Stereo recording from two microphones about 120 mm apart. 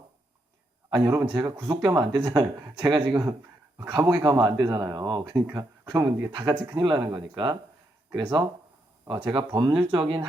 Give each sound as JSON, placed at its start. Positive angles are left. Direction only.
{"t": 0.9, "sound": "speech", "side_deg": -35}